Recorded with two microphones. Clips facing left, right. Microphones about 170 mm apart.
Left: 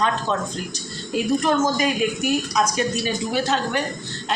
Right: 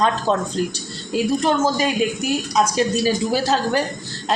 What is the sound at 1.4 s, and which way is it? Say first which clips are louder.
Speech: right 1 dB; 30° right (ahead or behind).